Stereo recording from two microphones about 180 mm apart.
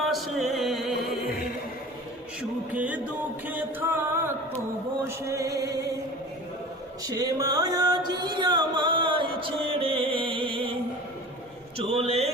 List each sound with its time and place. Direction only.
0.0 s music: centre (ahead or behind)
2.7 s music: 10° right (ahead or behind)
5.0 s music: 15° right (ahead or behind)
7.0 s music: 20° right (ahead or behind)
11.8 s a man's voice: 35° right (ahead or behind)